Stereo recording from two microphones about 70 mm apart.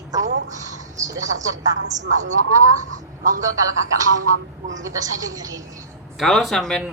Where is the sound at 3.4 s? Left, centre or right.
Right.